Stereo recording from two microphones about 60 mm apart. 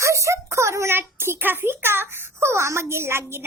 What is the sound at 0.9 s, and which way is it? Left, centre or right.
A child's voice, right.